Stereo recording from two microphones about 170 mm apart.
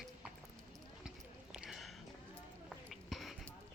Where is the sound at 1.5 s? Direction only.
5° right (ahead or behind).